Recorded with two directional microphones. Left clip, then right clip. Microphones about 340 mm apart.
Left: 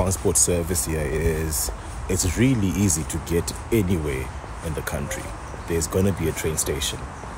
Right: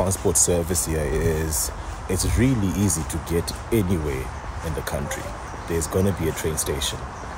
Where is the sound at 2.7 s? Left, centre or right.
Right.